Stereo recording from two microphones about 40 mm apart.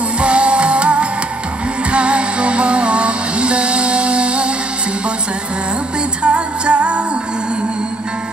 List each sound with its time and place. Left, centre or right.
0.2 s music: right
6.2 s music: right